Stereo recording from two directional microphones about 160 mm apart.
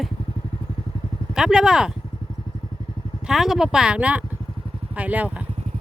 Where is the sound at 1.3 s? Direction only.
5° right (ahead or behind).